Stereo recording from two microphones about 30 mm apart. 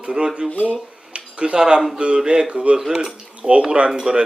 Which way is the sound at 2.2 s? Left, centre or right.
Right.